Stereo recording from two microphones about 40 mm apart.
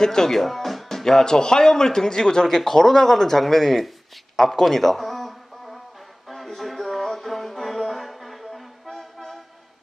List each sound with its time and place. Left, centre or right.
0.0 s speech: centre
4.4 s a sound: centre
6.2 s music: centre